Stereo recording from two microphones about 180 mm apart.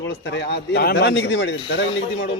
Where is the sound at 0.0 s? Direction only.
75° left (ahead or behind).